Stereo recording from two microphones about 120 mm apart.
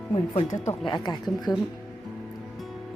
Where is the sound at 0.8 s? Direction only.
40° left (ahead or behind).